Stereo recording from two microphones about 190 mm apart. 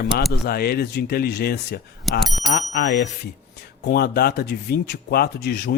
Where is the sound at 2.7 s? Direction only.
60° left (ahead or behind).